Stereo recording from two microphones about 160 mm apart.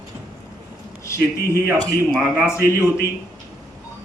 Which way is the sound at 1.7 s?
25° right (ahead or behind).